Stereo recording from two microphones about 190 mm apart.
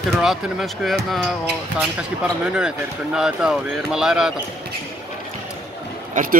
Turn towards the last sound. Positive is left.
turn(degrees=-45)  # may be behind; listen again after turning